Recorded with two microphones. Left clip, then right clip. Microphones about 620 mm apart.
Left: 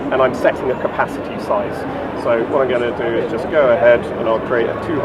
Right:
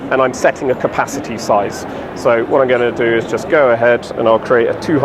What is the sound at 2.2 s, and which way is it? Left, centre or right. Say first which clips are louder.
Speech: right 4 dB; right.